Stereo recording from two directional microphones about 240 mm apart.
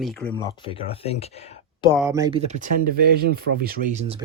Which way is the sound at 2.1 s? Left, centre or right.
Centre.